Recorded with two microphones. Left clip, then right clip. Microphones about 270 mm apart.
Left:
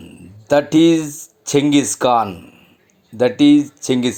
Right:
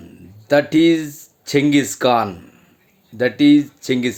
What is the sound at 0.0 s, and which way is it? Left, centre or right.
Speech, centre.